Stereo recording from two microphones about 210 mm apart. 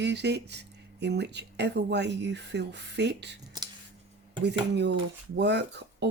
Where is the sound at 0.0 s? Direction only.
55° right (ahead or behind).